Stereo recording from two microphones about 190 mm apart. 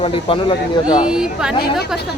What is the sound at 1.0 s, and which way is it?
Speech, 5° right (ahead or behind).